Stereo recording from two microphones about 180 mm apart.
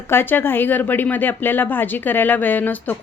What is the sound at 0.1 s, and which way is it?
Speech, 10° left (ahead or behind).